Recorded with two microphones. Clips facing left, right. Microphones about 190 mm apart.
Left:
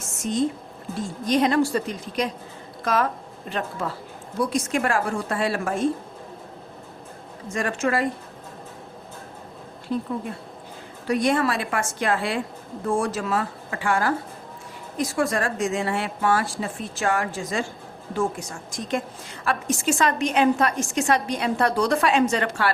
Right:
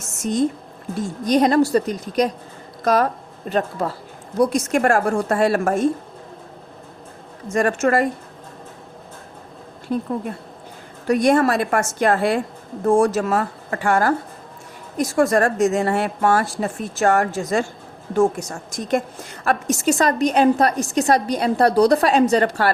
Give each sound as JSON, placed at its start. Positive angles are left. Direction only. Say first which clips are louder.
{"t": 1.3, "sound": "a woman's voice", "louder": "right 5 dB", "side_deg": -40}
{"t": 7.4, "sound": "a woman's voice", "louder": "right 6 dB", "side_deg": -45}
{"t": 9.9, "sound": "a woman's voice", "louder": "right 3 dB", "side_deg": -45}
{"t": 11.1, "sound": "a woman's voice", "louder": "right 6 dB", "side_deg": -45}